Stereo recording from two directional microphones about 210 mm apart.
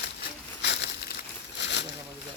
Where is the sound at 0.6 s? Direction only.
55° left (ahead or behind).